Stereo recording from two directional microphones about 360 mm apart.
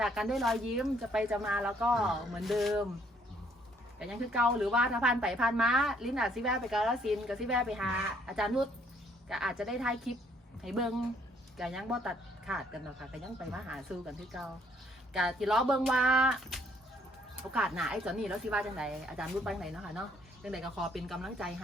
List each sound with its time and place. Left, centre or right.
0.0 s a woman's voice: centre
4.0 s a woman's voice: centre
15.1 s a woman's voice: centre